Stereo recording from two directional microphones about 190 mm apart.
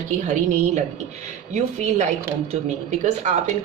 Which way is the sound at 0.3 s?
40° right (ahead or behind).